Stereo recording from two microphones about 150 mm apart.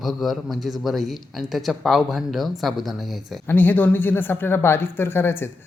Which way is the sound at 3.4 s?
10° left (ahead or behind).